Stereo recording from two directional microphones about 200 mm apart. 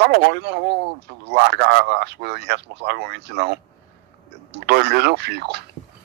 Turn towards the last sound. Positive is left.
turn(degrees=-55)  # may be behind; listen again after turning